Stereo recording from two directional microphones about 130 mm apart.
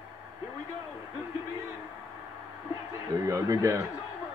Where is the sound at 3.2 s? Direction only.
25° right (ahead or behind).